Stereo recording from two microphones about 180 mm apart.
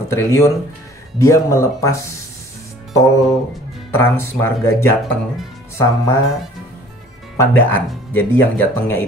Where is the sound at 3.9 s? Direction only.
15° left (ahead or behind).